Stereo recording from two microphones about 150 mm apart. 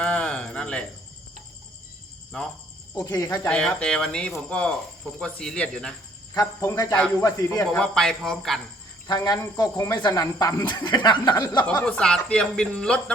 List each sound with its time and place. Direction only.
0.0 s a sound: 5° left (ahead or behind)
2.9 s speech: 25° left (ahead or behind)
3.5 s speech: 5° left (ahead or behind)
6.3 s speech: 25° left (ahead or behind)
7.6 s speech: 5° left (ahead or behind)
9.0 s speech: 25° left (ahead or behind)
11.6 s speech: 10° left (ahead or behind)